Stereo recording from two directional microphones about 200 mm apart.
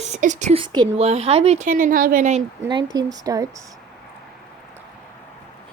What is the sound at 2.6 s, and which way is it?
Speech, 20° right (ahead or behind).